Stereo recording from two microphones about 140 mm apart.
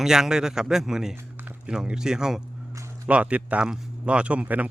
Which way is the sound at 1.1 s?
15° right (ahead or behind).